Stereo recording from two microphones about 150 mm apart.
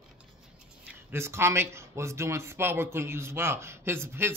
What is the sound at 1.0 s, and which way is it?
Speech, 15° right (ahead or behind).